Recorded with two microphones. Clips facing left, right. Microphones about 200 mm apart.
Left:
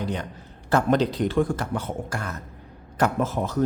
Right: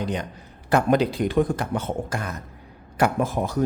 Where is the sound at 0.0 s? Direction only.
15° right (ahead or behind).